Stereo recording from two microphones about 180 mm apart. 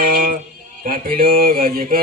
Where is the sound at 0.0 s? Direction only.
50° right (ahead or behind).